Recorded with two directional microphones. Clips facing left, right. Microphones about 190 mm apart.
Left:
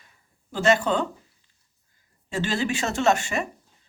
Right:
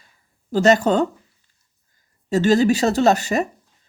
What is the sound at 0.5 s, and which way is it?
Speech, 40° right (ahead or behind).